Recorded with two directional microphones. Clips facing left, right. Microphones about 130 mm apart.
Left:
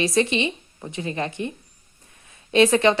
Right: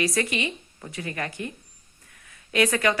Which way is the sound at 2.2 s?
25° left (ahead or behind).